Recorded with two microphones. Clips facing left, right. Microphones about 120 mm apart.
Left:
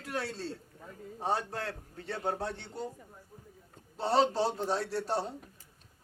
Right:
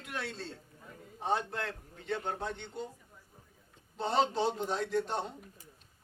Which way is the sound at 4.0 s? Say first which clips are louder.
Left 2 dB; 35° left (ahead or behind).